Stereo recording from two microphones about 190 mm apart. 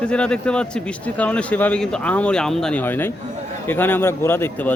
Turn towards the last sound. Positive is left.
turn(degrees=10)  # may be behind; listen again after turning